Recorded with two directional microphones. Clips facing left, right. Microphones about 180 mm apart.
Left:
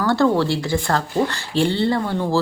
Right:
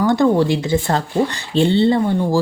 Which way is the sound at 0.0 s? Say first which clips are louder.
Right 3 dB; 20° right (ahead or behind).